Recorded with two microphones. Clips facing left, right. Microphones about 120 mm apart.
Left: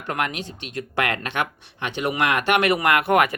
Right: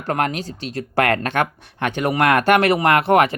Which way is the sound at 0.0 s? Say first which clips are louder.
Right 5 dB; 40° right (ahead or behind).